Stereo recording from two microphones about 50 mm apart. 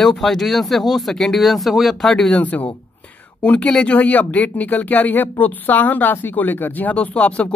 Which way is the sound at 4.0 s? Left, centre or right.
Left.